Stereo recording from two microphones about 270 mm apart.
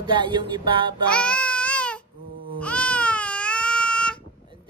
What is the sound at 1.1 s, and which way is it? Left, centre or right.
Babbling, centre.